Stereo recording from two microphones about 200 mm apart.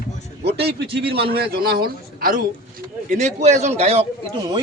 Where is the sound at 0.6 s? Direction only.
55° right (ahead or behind).